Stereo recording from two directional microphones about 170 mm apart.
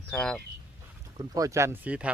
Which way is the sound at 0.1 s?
5° left (ahead or behind).